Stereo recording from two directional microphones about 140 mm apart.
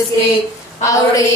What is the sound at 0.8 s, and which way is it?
Speech, 25° left (ahead or behind).